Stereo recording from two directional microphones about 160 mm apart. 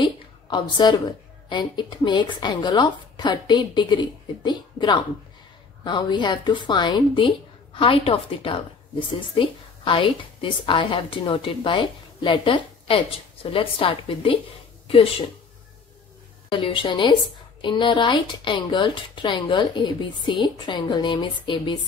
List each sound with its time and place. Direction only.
0.0 s a woman's voice: 30° left (ahead or behind)
16.4 s a woman's voice: 35° left (ahead or behind)